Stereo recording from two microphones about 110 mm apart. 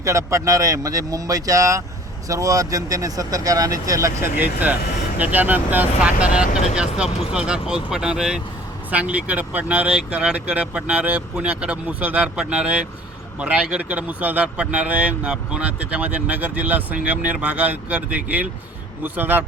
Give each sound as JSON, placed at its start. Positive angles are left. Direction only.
{"t": 0.0, "sound": "speech", "side_deg": -30}